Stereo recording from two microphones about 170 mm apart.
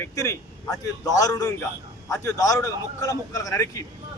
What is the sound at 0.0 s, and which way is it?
Speech, 20° left (ahead or behind).